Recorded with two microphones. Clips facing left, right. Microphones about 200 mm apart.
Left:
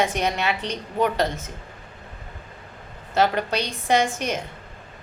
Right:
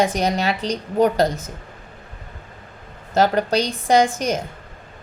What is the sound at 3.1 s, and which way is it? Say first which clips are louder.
A woman's voice: right 4 dB; 40° right (ahead or behind).